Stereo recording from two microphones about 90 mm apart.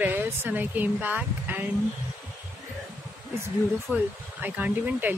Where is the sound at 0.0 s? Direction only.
20° right (ahead or behind).